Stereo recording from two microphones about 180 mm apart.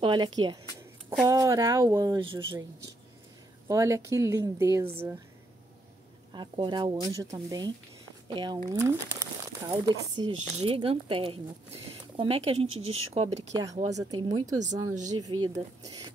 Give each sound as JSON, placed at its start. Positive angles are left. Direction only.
{"t": 0.0, "sound": "speech", "side_deg": -25}
{"t": 2.1, "sound": "speech", "side_deg": -25}
{"t": 3.6, "sound": "speech", "side_deg": -15}
{"t": 6.3, "sound": "speech", "side_deg": -25}
{"t": 8.6, "sound": "speech", "side_deg": -15}
{"t": 10.4, "sound": "speech", "side_deg": -35}
{"t": 12.6, "sound": "speech", "side_deg": -90}
{"t": 13.1, "sound": "speech", "side_deg": -35}
{"t": 13.5, "sound": "speech", "side_deg": -20}